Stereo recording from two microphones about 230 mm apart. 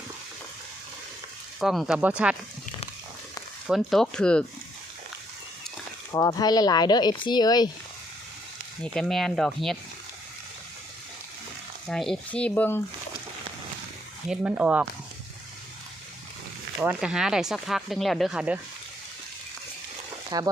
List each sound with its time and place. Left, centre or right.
1.5 s speech: centre
3.7 s speech: centre
6.1 s speech: centre
8.8 s speech: centre
11.9 s speech: centre
14.3 s speech: centre
16.8 s speech: centre
20.3 s speech: centre